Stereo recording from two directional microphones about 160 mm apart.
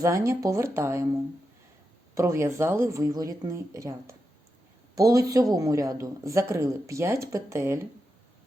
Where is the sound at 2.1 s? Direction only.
15° right (ahead or behind).